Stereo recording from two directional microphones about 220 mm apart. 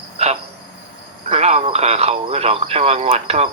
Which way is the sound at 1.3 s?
30° right (ahead or behind).